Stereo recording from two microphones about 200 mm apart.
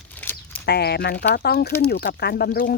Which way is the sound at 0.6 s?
55° left (ahead or behind).